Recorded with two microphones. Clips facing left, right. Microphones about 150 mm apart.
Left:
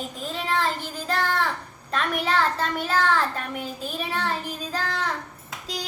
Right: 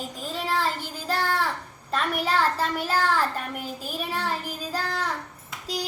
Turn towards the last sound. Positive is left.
turn(degrees=-5)  # may be behind; listen again after turning